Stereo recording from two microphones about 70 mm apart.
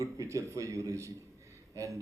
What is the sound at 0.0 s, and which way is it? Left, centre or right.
Speech, right.